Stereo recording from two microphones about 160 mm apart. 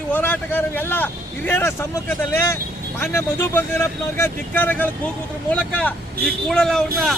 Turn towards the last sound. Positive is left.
turn(degrees=5)  # may be behind; listen again after turning